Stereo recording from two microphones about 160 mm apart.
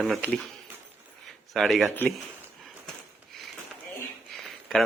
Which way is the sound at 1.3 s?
Centre (ahead or behind).